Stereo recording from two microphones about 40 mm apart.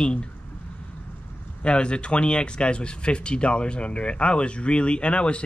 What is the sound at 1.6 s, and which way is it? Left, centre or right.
Speech, left.